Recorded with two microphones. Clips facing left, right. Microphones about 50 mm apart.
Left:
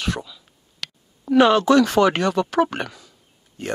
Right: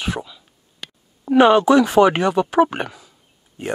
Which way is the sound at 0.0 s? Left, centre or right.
Centre.